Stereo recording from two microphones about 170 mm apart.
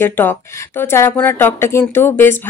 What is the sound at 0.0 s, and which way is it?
Speech, 10° left (ahead or behind).